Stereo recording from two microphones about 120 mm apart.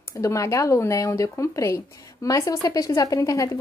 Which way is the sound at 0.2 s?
25° left (ahead or behind).